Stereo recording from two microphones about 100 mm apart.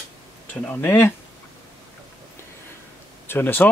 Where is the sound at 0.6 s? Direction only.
15° left (ahead or behind).